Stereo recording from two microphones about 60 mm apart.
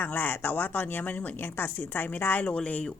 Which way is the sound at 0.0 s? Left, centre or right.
Left.